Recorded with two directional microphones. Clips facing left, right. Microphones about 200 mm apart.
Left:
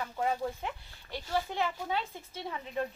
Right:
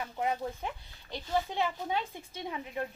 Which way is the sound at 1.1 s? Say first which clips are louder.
Right 1 dB; 15° right (ahead or behind).